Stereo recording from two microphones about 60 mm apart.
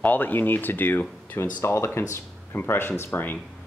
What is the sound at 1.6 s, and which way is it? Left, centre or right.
Speech, left.